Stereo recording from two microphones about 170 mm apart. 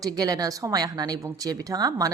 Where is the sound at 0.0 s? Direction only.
20° right (ahead or behind).